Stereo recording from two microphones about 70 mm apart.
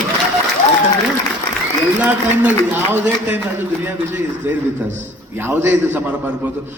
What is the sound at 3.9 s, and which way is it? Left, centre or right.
A man's voice, right.